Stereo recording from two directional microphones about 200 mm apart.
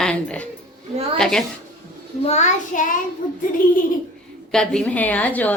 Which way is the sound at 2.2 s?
35° left (ahead or behind).